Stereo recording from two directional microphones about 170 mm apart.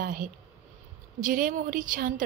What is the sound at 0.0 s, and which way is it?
A woman's voice, 55° right (ahead or behind).